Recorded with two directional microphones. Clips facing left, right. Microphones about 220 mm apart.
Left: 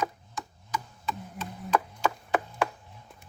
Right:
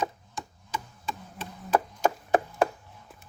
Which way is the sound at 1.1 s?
30° right (ahead or behind).